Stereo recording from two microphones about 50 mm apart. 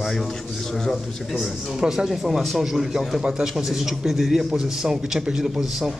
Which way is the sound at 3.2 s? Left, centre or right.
Centre.